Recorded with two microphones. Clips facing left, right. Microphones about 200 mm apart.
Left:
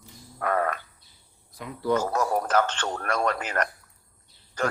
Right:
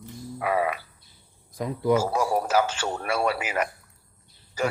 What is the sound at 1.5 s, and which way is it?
Speech, 40° right (ahead or behind).